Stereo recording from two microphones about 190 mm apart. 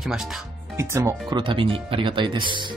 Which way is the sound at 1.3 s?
25° right (ahead or behind).